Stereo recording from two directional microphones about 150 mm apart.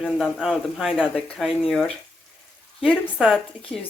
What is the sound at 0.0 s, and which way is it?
Speech, centre (ahead or behind).